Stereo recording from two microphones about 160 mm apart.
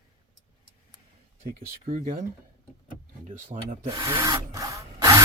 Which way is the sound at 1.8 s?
55° right (ahead or behind).